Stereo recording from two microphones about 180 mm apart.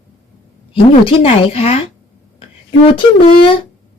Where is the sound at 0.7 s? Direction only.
30° left (ahead or behind).